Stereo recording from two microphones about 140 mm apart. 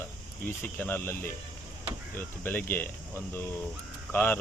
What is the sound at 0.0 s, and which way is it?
Speech, 15° left (ahead or behind).